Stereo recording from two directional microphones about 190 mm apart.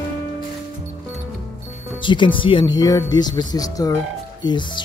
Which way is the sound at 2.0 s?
25° left (ahead or behind).